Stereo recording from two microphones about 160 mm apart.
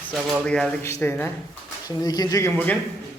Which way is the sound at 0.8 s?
15° left (ahead or behind).